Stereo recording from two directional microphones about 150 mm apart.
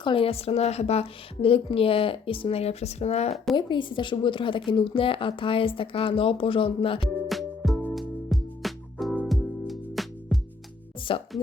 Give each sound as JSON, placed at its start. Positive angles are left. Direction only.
{"t": 0.0, "sound": "a woman's voice", "side_deg": 35}
{"t": 3.5, "sound": "a woman's voice", "side_deg": 30}
{"t": 7.3, "sound": "music", "side_deg": 0}
{"t": 11.1, "sound": "a woman's voice", "side_deg": 35}